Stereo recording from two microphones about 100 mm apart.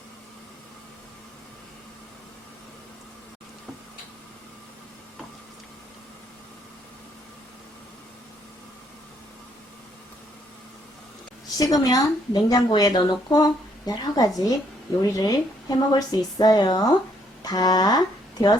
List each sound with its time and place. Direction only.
11.5 s speech: 40° left (ahead or behind)